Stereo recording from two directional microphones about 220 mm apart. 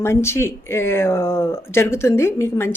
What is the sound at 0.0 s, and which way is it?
Speech, 10° left (ahead or behind).